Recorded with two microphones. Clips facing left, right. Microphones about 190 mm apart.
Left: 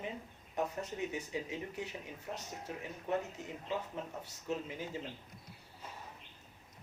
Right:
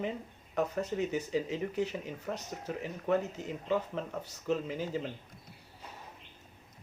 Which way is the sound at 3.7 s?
80° right.